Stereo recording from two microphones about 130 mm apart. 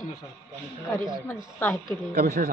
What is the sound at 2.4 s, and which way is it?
Speech, 90° right.